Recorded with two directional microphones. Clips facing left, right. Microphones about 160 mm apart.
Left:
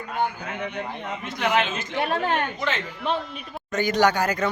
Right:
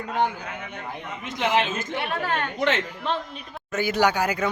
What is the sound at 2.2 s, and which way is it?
Speech, 20° left (ahead or behind).